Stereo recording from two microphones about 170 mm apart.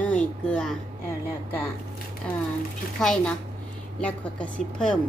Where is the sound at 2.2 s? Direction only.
5° left (ahead or behind).